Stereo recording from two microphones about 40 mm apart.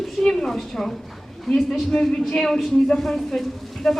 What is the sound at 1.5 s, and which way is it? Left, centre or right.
A woman's voice, centre.